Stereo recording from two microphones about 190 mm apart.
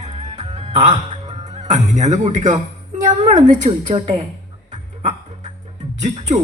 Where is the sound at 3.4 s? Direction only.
40° right (ahead or behind).